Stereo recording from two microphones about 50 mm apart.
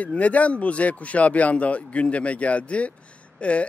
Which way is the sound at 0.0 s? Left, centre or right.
Left.